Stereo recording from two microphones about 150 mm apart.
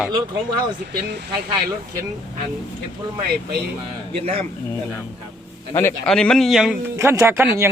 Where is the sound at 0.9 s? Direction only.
90° right.